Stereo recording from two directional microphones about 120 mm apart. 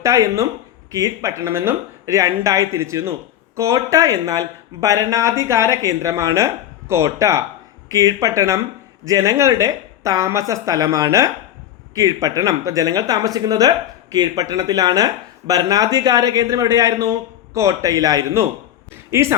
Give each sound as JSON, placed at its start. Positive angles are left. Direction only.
{"t": 0.0, "sound": "speech", "side_deg": -25}